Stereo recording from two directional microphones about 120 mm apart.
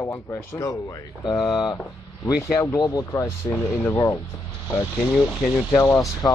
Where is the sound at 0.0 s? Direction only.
25° left (ahead or behind).